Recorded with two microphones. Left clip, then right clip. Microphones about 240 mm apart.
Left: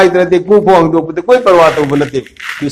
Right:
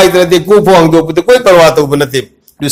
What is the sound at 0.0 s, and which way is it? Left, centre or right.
A man's voice, right.